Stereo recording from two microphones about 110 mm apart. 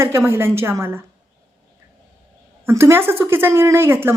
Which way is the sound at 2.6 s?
25° right (ahead or behind).